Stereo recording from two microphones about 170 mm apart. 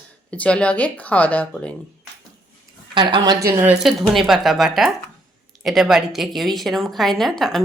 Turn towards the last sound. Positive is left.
turn(degrees=0)  # may be behind; listen again after turning